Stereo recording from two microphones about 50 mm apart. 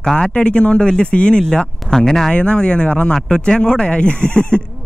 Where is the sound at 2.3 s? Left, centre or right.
Left.